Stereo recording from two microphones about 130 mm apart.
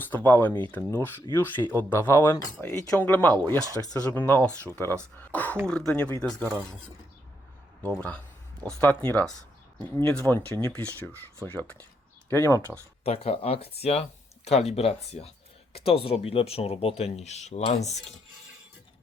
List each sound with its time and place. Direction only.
0.0 s speech: 15° left (ahead or behind)
8.6 s speech: 15° left (ahead or behind)
13.1 s speech: 50° left (ahead or behind)